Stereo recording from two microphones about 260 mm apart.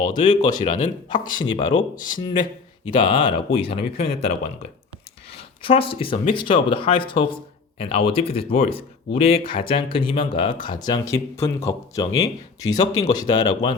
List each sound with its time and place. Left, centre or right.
0.0 s speech: centre
0.6 s speech: left
1.4 s speech: centre
2.0 s speech: left
2.2 s speech: centre
5.4 s speech: centre